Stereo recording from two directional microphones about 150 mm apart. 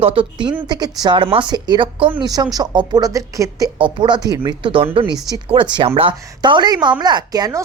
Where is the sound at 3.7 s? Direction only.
35° right (ahead or behind).